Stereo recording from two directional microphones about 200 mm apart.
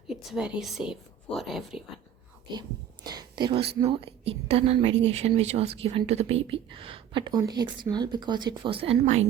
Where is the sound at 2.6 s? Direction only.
20° right (ahead or behind).